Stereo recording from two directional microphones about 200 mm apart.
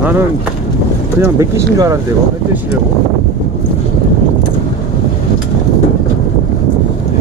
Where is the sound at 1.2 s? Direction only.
15° right (ahead or behind).